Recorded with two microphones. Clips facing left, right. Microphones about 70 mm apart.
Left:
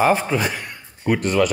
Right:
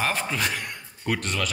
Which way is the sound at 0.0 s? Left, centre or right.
Centre.